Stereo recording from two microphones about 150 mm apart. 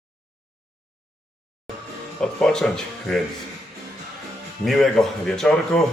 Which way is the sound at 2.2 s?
5° left (ahead or behind).